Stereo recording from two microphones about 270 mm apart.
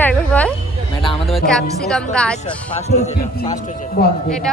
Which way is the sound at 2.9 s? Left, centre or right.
Left.